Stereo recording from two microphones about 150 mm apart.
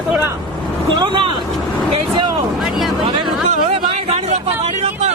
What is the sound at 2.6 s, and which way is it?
Vehicle, centre (ahead or behind).